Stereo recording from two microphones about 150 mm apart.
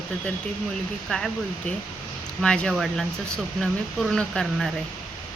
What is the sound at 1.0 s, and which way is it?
Speech, 5° left (ahead or behind).